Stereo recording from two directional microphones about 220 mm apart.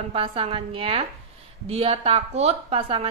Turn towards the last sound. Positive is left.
turn(degrees=-25)  # may be behind; listen again after turning